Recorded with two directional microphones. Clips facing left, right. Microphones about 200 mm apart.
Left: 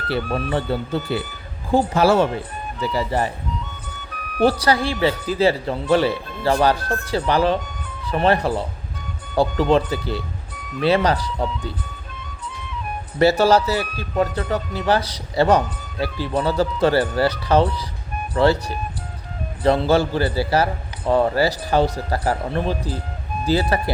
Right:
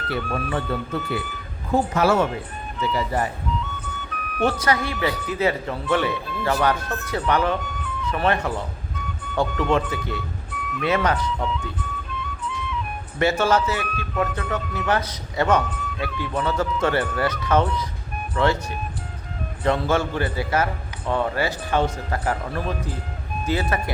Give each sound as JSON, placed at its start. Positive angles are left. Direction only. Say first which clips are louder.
{"t": 0.1, "sound": "speech", "louder": "left 4 dB", "side_deg": 35}
{"t": 4.4, "sound": "speech", "louder": "left 4 dB", "side_deg": 35}
{"t": 13.1, "sound": "speech", "louder": "left 5 dB", "side_deg": 35}